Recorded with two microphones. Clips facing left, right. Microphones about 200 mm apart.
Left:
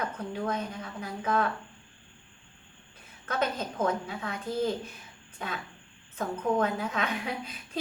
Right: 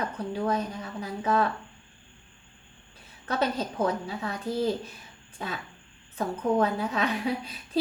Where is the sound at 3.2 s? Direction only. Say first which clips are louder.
Right 3 dB; 35° right (ahead or behind).